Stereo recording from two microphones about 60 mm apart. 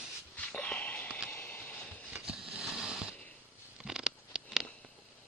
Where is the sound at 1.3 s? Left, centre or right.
Left.